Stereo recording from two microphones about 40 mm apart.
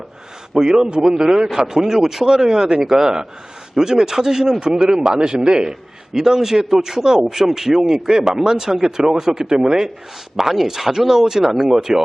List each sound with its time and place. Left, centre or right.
0.6 s a man's voice: centre